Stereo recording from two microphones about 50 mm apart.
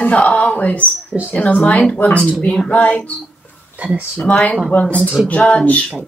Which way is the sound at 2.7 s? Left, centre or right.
Left.